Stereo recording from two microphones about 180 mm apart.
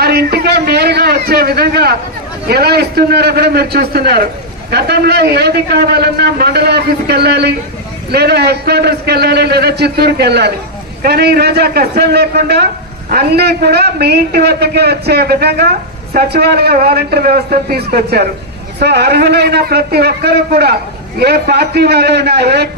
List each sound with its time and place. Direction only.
0.0 s a man's voice: 60° right (ahead or behind)